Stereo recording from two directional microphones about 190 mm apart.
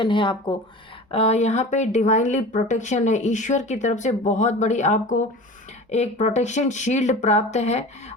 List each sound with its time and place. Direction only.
0.0 s speech: 25° left (ahead or behind)